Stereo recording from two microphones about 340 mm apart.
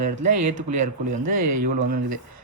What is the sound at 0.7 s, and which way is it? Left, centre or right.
A man's voice, right.